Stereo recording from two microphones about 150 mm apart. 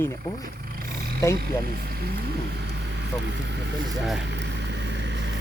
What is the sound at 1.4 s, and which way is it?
Speech, 90° right.